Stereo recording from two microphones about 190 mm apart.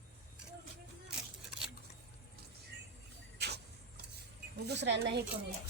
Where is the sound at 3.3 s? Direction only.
60° right (ahead or behind).